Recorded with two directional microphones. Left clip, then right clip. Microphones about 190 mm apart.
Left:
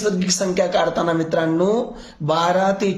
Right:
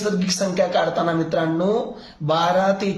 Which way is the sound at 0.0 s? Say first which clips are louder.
Left 2 dB; 35° left (ahead or behind).